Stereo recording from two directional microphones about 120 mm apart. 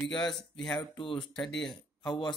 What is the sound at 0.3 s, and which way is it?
Speech, 5° left (ahead or behind).